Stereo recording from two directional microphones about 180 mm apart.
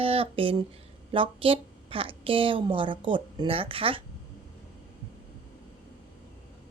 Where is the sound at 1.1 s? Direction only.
30° right (ahead or behind).